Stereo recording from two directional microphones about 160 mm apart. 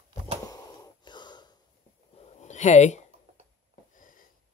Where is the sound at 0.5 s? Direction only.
25° left (ahead or behind).